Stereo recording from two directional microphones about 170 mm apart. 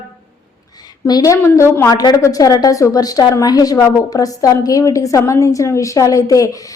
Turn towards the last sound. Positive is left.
turn(degrees=20)  # may be behind; listen again after turning